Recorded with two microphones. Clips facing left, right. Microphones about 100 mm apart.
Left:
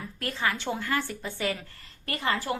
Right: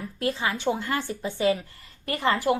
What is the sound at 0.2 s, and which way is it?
A woman's voice, 20° right (ahead or behind).